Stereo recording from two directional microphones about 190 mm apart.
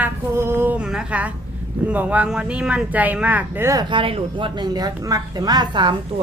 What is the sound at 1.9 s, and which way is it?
Speech, 5° right (ahead or behind).